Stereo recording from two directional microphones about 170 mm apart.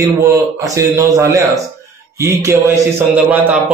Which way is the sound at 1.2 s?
20° right (ahead or behind).